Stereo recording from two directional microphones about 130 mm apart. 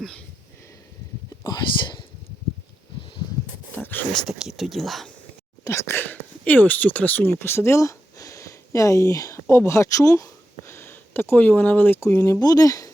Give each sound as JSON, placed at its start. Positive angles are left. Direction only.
{"t": 1.5, "sound": "speech", "side_deg": 35}
{"t": 4.1, "sound": "speech", "side_deg": 0}
{"t": 5.6, "sound": "speech", "side_deg": 20}